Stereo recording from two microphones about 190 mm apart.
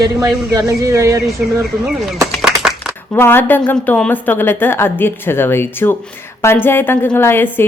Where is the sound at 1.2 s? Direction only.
Centre (ahead or behind).